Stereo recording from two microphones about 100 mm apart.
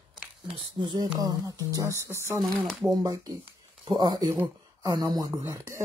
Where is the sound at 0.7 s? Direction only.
50° right (ahead or behind).